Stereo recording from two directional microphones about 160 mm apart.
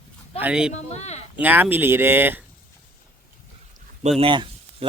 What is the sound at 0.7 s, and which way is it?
Speech, 45° left (ahead or behind).